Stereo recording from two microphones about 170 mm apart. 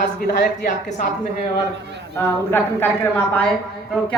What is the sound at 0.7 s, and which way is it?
Speech, 45° left (ahead or behind).